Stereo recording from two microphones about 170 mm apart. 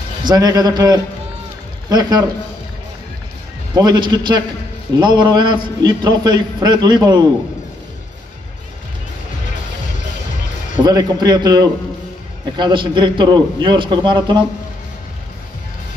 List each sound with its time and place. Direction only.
0.3 s a man's voice: 20° right (ahead or behind)
3.7 s a man's voice: 25° right (ahead or behind)
10.9 s a man's voice: 25° right (ahead or behind)